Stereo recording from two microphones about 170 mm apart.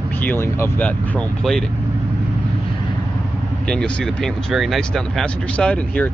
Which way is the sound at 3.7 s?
5° left (ahead or behind).